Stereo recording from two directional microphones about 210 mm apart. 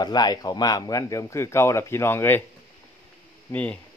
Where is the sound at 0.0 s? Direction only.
20° left (ahead or behind).